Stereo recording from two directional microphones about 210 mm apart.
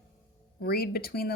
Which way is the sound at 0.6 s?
50° left (ahead or behind).